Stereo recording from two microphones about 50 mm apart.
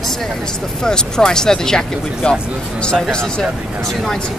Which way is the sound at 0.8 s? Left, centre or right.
Centre.